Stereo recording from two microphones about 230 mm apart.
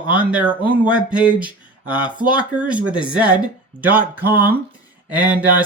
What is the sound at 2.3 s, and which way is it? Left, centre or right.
Speech, centre.